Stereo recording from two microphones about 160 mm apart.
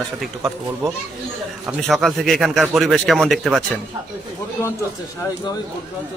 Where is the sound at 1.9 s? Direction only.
Centre (ahead or behind).